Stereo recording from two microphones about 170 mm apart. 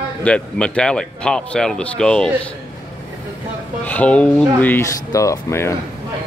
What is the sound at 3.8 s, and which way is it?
Speech, 10° left (ahead or behind).